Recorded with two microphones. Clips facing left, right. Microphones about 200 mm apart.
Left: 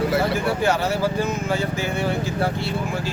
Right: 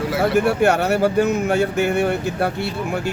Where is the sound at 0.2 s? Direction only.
70° right (ahead or behind).